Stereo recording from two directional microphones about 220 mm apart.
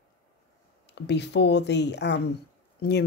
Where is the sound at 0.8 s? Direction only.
50° left (ahead or behind).